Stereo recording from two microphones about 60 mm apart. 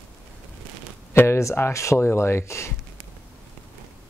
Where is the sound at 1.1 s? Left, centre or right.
Left.